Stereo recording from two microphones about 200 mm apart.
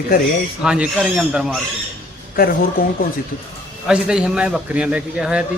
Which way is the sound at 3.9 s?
5° right (ahead or behind).